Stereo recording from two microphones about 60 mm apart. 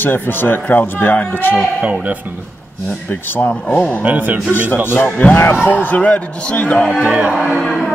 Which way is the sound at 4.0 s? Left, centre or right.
Right.